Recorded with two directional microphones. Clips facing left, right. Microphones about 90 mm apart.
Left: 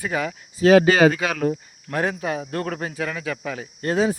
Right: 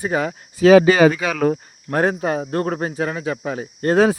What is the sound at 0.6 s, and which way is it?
Speech, 75° right (ahead or behind).